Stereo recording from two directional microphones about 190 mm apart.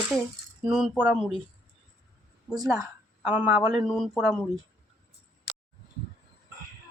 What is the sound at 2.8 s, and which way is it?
Speech, 10° right (ahead or behind).